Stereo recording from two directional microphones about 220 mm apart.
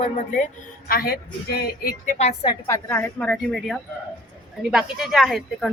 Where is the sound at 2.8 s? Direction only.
10° left (ahead or behind).